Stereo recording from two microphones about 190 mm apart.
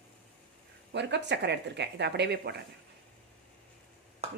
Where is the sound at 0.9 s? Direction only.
65° right (ahead or behind).